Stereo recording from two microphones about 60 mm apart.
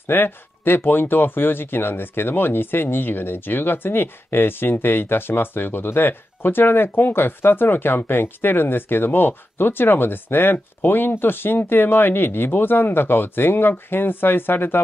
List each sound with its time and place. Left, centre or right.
0.0 s speech: left